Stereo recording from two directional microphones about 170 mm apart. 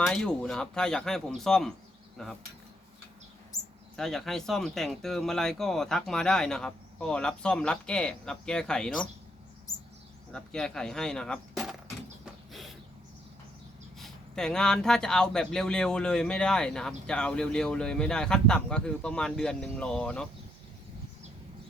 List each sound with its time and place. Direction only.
0.0 s speech: 5° left (ahead or behind)
3.9 s speech: centre (ahead or behind)
10.3 s speech: 5° left (ahead or behind)
12.2 s a sound: centre (ahead or behind)
14.0 s speech: 5° left (ahead or behind)